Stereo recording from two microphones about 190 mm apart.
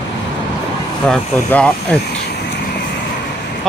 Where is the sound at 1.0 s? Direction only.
5° left (ahead or behind).